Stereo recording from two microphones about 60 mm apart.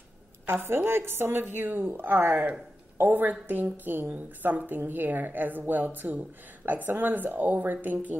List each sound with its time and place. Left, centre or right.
0.5 s a woman's voice: right